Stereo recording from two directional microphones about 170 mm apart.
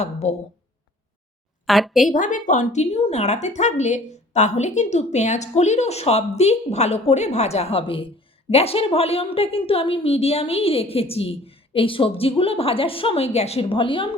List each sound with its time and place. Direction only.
0.0 s speech: 40° left (ahead or behind)
1.6 s a woman's voice: centre (ahead or behind)
2.0 s speech: 50° left (ahead or behind); by 14.1 s 30° left (ahead or behind)